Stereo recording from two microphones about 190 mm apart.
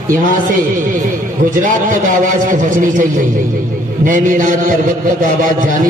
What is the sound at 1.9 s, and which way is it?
A man's voice, 45° right (ahead or behind).